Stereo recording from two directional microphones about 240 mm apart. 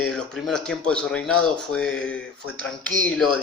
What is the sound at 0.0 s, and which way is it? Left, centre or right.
Speech, centre.